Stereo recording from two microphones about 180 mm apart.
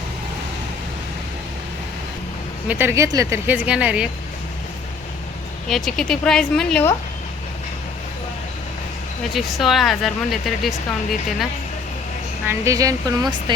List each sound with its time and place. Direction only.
2.6 s speech: 10° right (ahead or behind)
5.6 s speech: centre (ahead or behind)
9.3 s speech: centre (ahead or behind)
12.5 s speech: 15° right (ahead or behind)